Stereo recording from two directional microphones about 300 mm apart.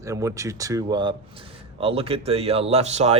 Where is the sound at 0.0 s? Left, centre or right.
Centre.